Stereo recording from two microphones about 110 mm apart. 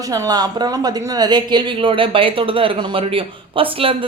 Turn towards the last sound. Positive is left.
turn(degrees=-55)  # may be behind; listen again after turning